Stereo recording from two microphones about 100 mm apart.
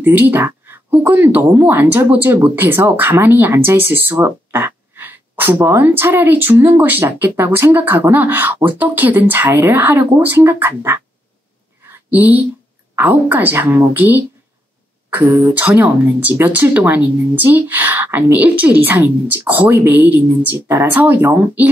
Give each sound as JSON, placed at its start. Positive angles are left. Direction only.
{"t": 0.0, "sound": "speech", "side_deg": -20}
{"t": 12.1, "sound": "speech", "side_deg": -15}
{"t": 15.6, "sound": "speech", "side_deg": -15}